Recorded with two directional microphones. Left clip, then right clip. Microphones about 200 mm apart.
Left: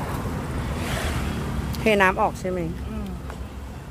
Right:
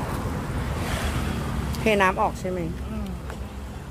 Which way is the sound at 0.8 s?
55° left (ahead or behind).